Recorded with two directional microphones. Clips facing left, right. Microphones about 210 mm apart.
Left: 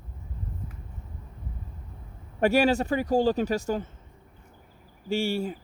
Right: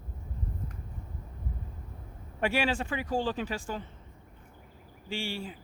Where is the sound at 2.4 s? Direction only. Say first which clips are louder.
Left 7 dB; 40° left (ahead or behind).